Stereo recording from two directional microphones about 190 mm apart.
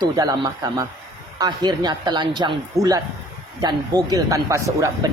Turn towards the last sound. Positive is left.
turn(degrees=-15)  # may be behind; listen again after turning